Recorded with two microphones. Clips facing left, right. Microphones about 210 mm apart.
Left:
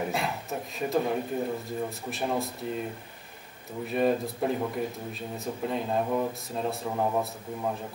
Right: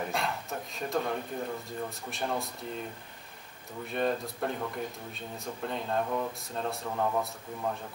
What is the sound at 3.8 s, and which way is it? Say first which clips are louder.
Speech: left 5 dB; 5° left (ahead or behind).